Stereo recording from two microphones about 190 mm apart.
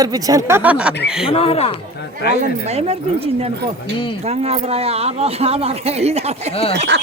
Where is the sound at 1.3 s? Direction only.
30° left (ahead or behind).